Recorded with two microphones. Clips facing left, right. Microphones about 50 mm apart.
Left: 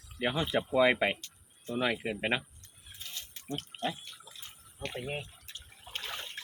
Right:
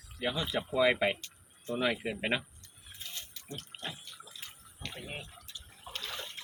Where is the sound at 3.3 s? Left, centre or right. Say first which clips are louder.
Left 6 dB; left.